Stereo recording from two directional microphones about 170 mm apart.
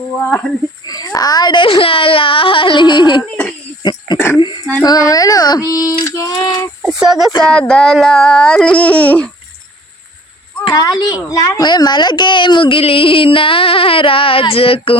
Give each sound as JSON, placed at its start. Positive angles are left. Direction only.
{"t": 0.4, "sound": "speech", "side_deg": 0}
{"t": 0.9, "sound": "speech", "side_deg": 20}
{"t": 4.4, "sound": "a sound", "side_deg": 30}
{"t": 4.8, "sound": "speech", "side_deg": 20}
{"t": 6.8, "sound": "speech", "side_deg": -5}
{"t": 10.6, "sound": "a child's voice", "side_deg": 25}